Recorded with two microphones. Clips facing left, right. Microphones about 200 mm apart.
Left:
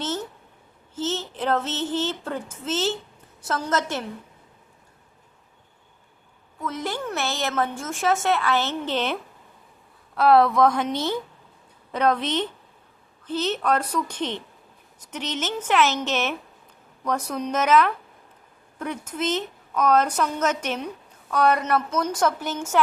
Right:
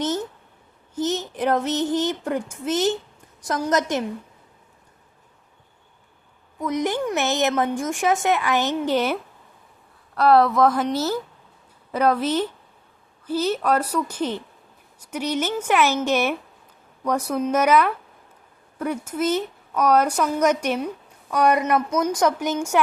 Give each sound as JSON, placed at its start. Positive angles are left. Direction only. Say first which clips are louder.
{"t": 0.0, "sound": "a sound", "louder": "right 4 dB", "side_deg": -15}
{"t": 0.9, "sound": "female singing", "louder": "right 4 dB", "side_deg": -15}
{"t": 3.4, "sound": "a woman's voice", "louder": "right 3 dB", "side_deg": -15}
{"t": 6.6, "sound": "a woman's voice", "louder": "right 6 dB", "side_deg": -15}
{"t": 10.2, "sound": "a woman's voice", "louder": "right 1 dB", "side_deg": 0}